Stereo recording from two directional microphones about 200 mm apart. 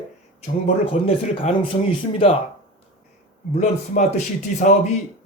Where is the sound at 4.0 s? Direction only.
35° left (ahead or behind).